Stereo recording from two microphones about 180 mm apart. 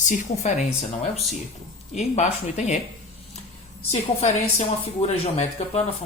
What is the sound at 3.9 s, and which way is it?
Speech, 35° left (ahead or behind).